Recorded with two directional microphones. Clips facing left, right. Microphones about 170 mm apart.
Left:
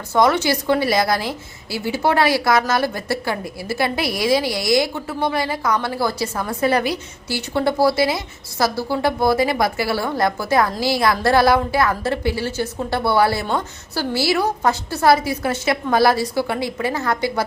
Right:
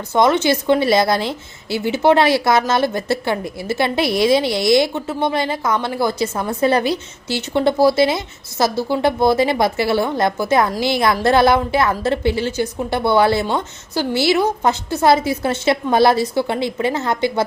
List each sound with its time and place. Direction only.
0.1 s a woman's voice: 20° right (ahead or behind)